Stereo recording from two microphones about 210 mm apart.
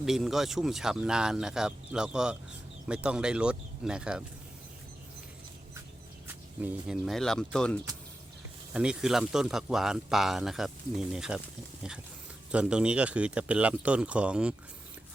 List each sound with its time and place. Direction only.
0.0 s speech: centre (ahead or behind)
6.2 s speech: 5° right (ahead or behind)
12.5 s speech: 5° right (ahead or behind)